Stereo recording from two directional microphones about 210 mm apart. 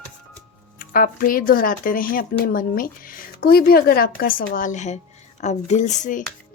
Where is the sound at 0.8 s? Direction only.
40° left (ahead or behind).